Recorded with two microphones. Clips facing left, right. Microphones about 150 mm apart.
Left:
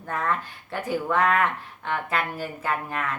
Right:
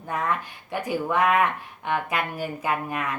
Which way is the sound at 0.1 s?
15° right (ahead or behind).